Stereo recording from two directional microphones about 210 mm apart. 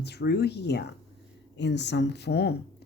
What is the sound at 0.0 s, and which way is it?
Speech, 50° left (ahead or behind).